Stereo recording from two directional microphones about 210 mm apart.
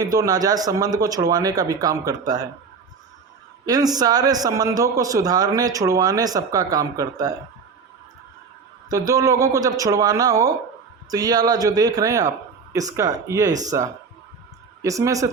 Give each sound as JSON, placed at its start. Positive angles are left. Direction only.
{"t": 0.0, "sound": "a man's voice", "side_deg": -15}
{"t": 3.7, "sound": "a man's voice", "side_deg": -20}
{"t": 8.9, "sound": "a man's voice", "side_deg": -15}